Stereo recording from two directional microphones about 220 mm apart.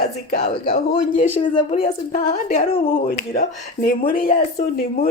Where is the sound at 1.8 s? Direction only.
35° left (ahead or behind).